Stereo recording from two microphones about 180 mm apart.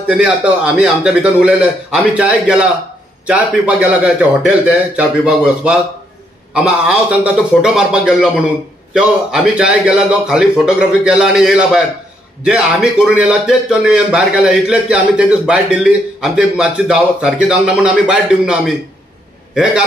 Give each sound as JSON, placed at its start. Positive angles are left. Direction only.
{"t": 0.1, "sound": "a man's voice", "side_deg": -5}
{"t": 13.0, "sound": "a man's voice", "side_deg": -5}